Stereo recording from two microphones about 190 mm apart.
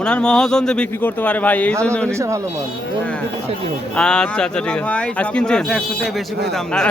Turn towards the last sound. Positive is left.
turn(degrees=5)  # may be behind; listen again after turning